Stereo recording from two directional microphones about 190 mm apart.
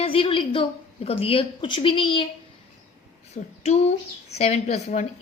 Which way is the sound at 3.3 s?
35° left (ahead or behind).